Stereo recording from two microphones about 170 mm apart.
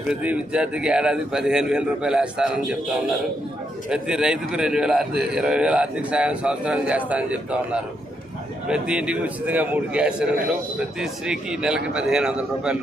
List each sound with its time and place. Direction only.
0.1 s a man's voice: 5° right (ahead or behind)
3.8 s a man's voice: 5° right (ahead or behind)